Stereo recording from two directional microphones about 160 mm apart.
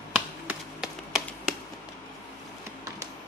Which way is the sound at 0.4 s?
5° right (ahead or behind).